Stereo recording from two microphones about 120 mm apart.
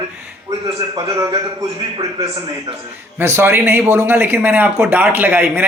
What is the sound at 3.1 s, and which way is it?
A man's voice, 20° right (ahead or behind).